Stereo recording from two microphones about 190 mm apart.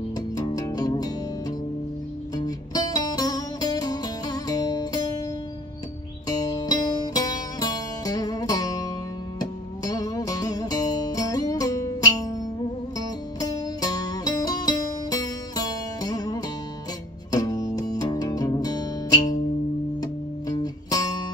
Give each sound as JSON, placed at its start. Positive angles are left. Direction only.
{"t": 0.4, "sound": "music", "side_deg": 20}
{"t": 2.3, "sound": "music", "side_deg": 20}
{"t": 6.2, "sound": "music", "side_deg": 20}
{"t": 13.4, "sound": "music", "side_deg": 20}